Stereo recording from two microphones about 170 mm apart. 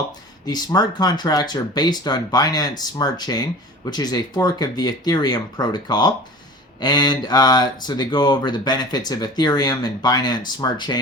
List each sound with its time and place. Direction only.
0.4 s speech: 25° left (ahead or behind)